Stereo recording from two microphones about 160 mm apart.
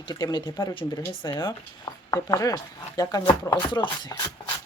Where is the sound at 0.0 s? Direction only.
25° left (ahead or behind).